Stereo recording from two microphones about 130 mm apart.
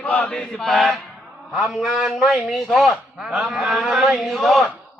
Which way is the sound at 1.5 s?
5° right (ahead or behind).